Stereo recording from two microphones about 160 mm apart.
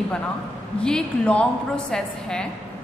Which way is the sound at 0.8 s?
5° left (ahead or behind).